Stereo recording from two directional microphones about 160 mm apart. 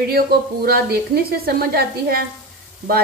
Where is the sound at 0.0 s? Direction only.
75° right (ahead or behind).